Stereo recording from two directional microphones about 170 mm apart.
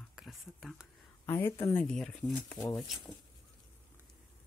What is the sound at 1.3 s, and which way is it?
Speech, 15° left (ahead or behind).